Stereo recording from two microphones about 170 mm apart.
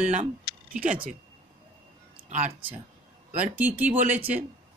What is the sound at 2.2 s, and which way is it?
Speech, 45° right (ahead or behind).